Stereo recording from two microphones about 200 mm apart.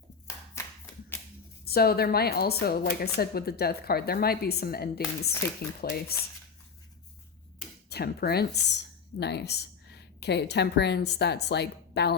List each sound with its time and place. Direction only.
0.6 s clapping: 15° left (ahead or behind)
1.6 s a woman's voice: 50° left (ahead or behind)
7.9 s speech: 55° left (ahead or behind)